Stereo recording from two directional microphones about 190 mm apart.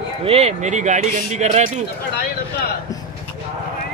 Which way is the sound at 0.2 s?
30° right (ahead or behind).